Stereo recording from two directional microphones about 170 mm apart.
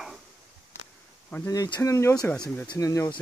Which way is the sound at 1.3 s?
15° left (ahead or behind).